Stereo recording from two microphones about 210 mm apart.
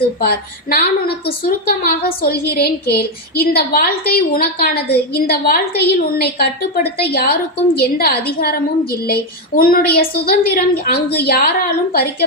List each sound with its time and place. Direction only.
0.2 s a woman's voice: 50° left (ahead or behind)